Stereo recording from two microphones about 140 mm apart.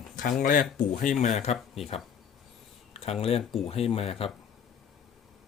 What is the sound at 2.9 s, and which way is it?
Speech, 45° left (ahead or behind).